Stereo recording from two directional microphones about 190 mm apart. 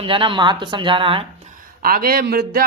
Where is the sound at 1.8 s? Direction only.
50° right (ahead or behind).